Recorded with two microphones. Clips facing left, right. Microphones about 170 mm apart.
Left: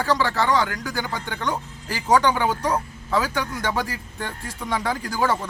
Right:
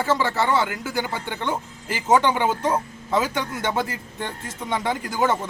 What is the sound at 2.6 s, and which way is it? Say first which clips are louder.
A man's voice: right 1 dB; 25° right (ahead or behind).